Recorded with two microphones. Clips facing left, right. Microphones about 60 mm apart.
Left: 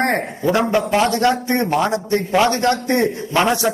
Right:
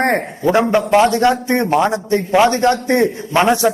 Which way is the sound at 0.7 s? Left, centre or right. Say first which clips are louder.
Right 4 dB; right.